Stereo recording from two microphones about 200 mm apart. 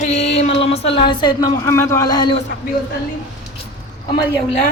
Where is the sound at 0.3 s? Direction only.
30° left (ahead or behind).